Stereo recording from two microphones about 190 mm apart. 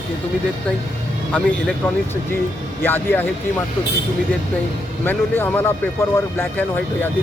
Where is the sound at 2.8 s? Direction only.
10° left (ahead or behind).